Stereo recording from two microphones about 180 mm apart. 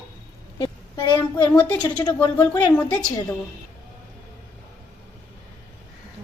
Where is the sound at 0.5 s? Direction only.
25° left (ahead or behind).